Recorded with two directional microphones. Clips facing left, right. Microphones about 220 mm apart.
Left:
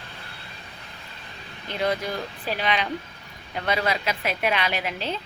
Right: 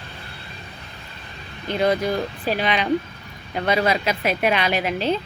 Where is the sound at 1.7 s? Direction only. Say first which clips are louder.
Right 5 dB; 40° right (ahead or behind).